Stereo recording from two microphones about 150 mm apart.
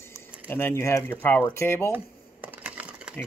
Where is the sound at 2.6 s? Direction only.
10° right (ahead or behind).